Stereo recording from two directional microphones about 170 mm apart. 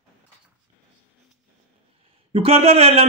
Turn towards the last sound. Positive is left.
turn(degrees=-35)  # may be behind; listen again after turning